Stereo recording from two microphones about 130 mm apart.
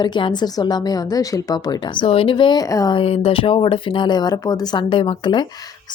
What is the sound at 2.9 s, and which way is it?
Speech, 50° left (ahead or behind).